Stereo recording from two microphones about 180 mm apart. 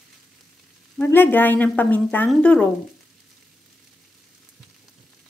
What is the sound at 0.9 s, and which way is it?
A woman's voice, 10° left (ahead or behind).